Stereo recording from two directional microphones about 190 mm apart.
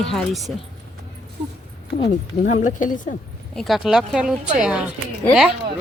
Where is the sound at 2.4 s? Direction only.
40° left (ahead or behind).